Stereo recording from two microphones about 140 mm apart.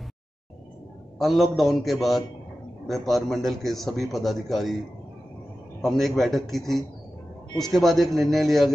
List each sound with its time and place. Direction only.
1.1 s a man's voice: centre (ahead or behind)
5.8 s a man's voice: centre (ahead or behind)